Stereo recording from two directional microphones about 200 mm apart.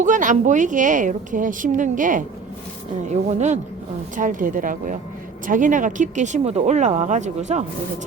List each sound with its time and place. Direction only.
0.0 s a woman's voice: 40° right (ahead or behind)